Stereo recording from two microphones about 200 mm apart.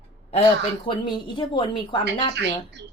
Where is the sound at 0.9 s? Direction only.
25° left (ahead or behind).